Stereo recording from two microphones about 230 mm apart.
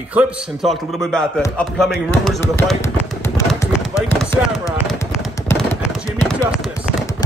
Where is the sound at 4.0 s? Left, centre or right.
Centre.